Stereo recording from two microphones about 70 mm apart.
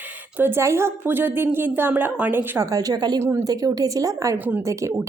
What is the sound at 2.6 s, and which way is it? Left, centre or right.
Speech, right.